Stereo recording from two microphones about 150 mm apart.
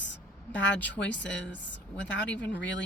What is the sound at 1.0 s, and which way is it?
Speech, 20° left (ahead or behind).